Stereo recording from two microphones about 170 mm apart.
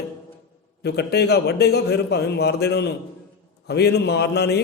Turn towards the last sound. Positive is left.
turn(degrees=75)  # may be behind; listen again after turning